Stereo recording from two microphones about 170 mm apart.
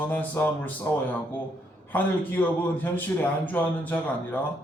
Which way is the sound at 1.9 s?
10° left (ahead or behind).